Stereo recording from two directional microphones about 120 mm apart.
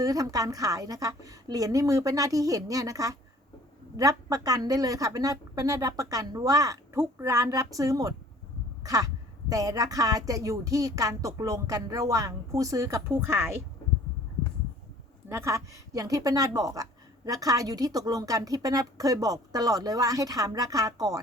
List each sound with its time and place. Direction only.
0.0 s a woman's voice: 30° right (ahead or behind)
15.3 s a woman's voice: 25° right (ahead or behind)